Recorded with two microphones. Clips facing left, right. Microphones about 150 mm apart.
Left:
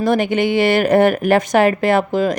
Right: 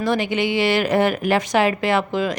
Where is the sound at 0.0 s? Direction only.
50° left (ahead or behind).